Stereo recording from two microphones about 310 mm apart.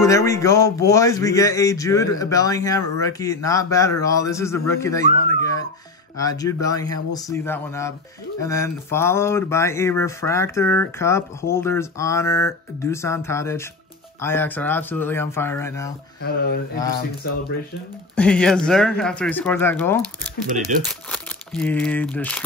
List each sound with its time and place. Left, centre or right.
0.0 s a man's voice: centre
16.2 s speech: left
18.1 s speech: centre
20.4 s speech: right
20.8 s speech: centre